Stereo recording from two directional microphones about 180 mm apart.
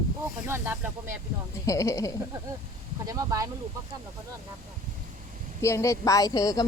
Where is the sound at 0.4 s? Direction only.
10° right (ahead or behind).